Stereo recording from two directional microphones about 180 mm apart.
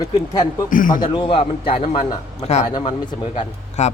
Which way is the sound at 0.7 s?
50° left (ahead or behind).